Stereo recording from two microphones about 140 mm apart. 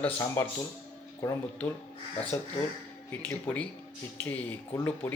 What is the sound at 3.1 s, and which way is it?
Speech, 15° left (ahead or behind).